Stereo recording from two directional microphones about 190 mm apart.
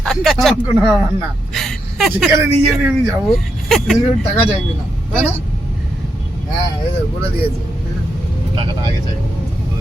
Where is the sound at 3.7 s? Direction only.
Centre (ahead or behind).